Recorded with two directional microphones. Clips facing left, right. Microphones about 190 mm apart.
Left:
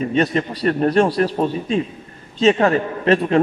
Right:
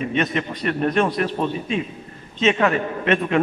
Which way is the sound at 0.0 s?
35° left (ahead or behind).